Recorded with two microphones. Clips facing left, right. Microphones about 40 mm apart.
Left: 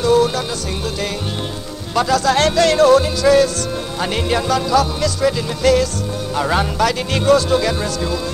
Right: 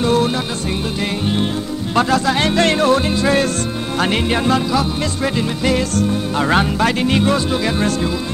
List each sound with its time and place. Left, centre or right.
0.0 s music: right
2.0 s speech: right
2.2 s speech: centre
2.5 s music: right